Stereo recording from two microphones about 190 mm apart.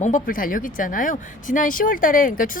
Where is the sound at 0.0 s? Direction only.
45° left (ahead or behind).